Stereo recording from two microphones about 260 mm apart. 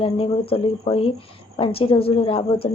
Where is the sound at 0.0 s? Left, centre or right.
Left.